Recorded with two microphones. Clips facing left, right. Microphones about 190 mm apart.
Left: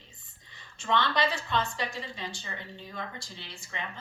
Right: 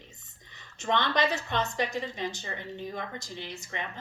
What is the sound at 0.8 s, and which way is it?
A woman's voice, 20° right (ahead or behind).